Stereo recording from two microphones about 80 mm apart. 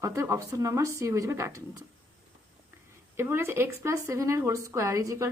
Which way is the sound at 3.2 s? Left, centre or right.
Right.